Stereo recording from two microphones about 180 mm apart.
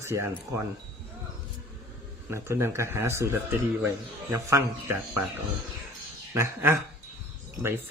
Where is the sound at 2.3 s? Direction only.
15° right (ahead or behind).